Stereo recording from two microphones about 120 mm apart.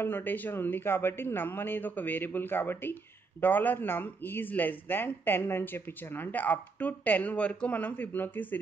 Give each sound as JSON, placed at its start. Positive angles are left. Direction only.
{"t": 0.0, "sound": "a man's voice", "side_deg": 15}